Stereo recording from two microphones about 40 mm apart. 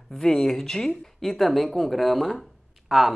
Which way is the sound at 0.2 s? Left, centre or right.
Centre.